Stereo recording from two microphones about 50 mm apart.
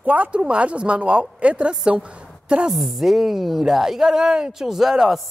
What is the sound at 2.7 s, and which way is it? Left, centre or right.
A woman's voice, centre.